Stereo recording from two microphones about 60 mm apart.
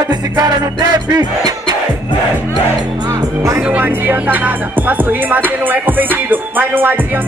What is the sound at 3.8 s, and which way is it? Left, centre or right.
Music, right.